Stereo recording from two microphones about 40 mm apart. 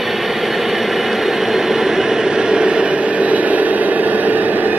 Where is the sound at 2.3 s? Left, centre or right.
Right.